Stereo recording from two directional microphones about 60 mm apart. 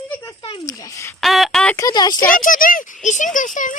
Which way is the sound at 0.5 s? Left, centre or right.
Left.